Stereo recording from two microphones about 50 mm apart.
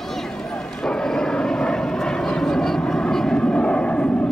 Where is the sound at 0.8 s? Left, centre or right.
Centre.